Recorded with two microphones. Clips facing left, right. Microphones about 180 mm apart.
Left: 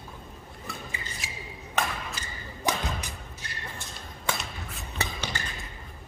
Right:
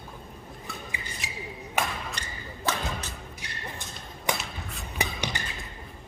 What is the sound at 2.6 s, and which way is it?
Music, 15° left (ahead or behind).